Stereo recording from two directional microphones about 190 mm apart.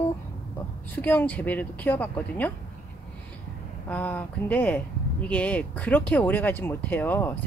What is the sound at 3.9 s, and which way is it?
Speech, 10° left (ahead or behind).